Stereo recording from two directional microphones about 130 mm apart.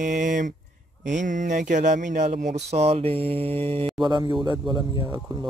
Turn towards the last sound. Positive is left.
turn(degrees=-35)  # may be behind; listen again after turning